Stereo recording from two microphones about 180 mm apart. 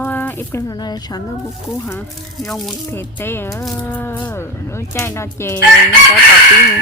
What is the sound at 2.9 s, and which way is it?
Speech, 10° left (ahead or behind).